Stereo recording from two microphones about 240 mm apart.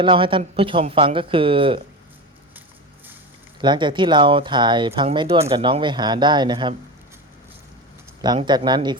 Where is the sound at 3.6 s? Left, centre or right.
Centre.